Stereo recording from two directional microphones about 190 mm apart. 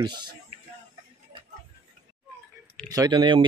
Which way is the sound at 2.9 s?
20° right (ahead or behind).